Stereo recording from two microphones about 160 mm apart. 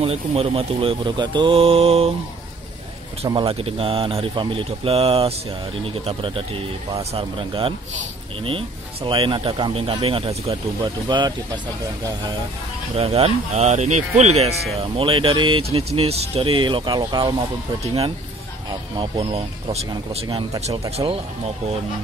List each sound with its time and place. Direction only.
0.0 s speech: 40° right (ahead or behind)
3.3 s speech: 35° right (ahead or behind)
12.9 s speech: 40° right (ahead or behind)
18.7 s speech: 30° right (ahead or behind)